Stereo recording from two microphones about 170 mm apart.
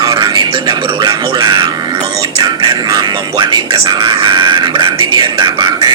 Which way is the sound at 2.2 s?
25° right (ahead or behind).